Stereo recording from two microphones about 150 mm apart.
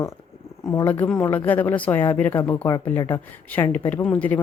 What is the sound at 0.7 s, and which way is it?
Speech, 15° left (ahead or behind).